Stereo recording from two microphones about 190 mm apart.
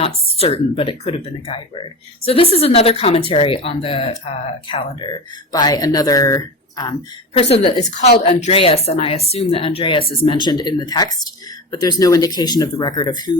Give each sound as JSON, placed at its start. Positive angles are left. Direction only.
{"t": 0.0, "sound": "speech", "side_deg": 30}
{"t": 7.3, "sound": "speech", "side_deg": 30}